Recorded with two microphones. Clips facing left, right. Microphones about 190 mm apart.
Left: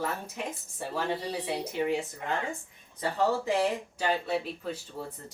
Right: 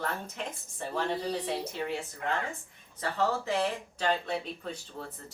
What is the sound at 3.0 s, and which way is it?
Speech, 15° left (ahead or behind).